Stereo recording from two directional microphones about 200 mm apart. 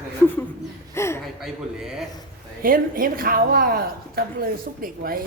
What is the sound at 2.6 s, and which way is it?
A woman's voice, 45° right (ahead or behind).